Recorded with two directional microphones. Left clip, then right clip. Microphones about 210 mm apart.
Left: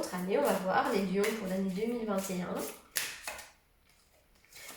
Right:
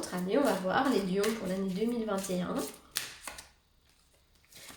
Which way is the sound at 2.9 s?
30° right (ahead or behind).